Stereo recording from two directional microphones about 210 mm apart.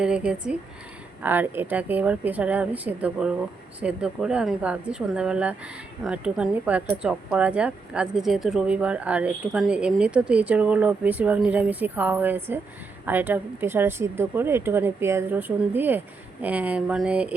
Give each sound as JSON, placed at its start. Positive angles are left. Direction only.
{"t": 0.0, "sound": "a woman's voice", "side_deg": -5}